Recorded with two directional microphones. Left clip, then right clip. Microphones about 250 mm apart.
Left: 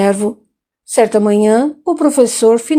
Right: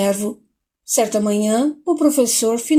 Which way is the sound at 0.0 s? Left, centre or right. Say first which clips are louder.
Left 6 dB; centre.